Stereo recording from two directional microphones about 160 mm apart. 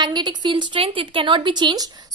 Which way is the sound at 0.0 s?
25° right (ahead or behind).